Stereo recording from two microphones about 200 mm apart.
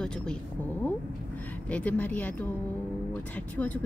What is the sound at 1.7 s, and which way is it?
Speech, 5° left (ahead or behind).